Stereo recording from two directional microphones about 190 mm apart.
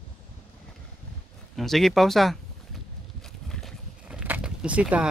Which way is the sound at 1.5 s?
Centre (ahead or behind).